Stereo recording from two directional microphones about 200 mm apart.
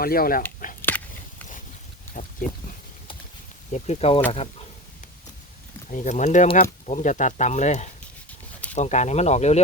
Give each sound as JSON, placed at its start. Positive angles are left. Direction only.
{"t": 0.0, "sound": "speech", "side_deg": 45}
{"t": 0.8, "sound": "biting", "side_deg": 10}
{"t": 3.7, "sound": "speech", "side_deg": 35}
{"t": 5.9, "sound": "speech", "side_deg": 40}